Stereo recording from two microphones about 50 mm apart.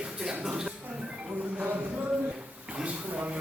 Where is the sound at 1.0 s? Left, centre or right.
Right.